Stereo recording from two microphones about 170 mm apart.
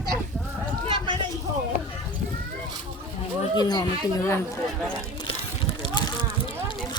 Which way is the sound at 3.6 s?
25° left (ahead or behind).